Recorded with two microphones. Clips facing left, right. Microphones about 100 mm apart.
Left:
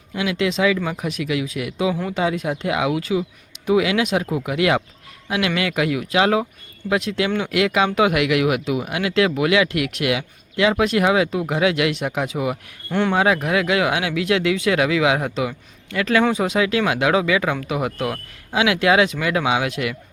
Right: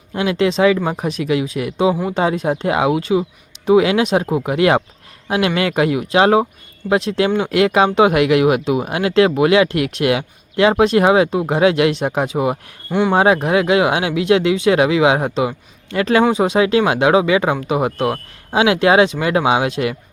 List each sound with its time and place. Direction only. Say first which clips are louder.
0.1 s speech: right 5 dB; 40° right (ahead or behind)
12.9 s speech: right 4 dB; 10° right (ahead or behind)
13.1 s speech: right 6 dB; 30° right (ahead or behind)